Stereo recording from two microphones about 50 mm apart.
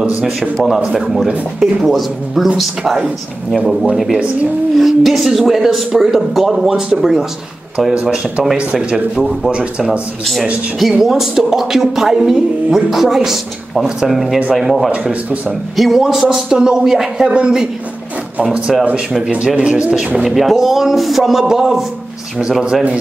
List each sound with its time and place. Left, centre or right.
0.9 s speech: centre
3.9 s a woman's voice: centre
8.0 s speech: centre
8.7 s speech: centre
9.5 s a woman's voice: centre
20.2 s speech: centre